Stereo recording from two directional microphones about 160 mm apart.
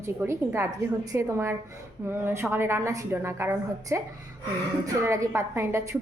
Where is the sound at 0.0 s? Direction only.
15° right (ahead or behind).